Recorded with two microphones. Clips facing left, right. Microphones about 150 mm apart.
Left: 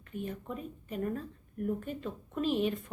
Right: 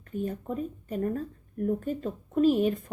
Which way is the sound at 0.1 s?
40° right (ahead or behind).